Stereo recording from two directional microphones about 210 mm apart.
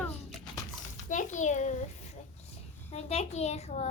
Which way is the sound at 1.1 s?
35° left (ahead or behind).